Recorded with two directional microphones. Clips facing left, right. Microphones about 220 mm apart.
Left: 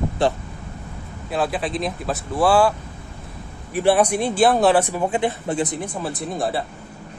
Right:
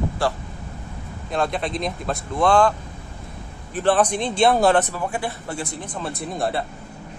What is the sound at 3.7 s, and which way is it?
Speech, 10° left (ahead or behind).